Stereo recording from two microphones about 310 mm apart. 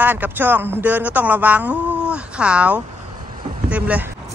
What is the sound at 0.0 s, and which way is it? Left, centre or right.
Speech, centre.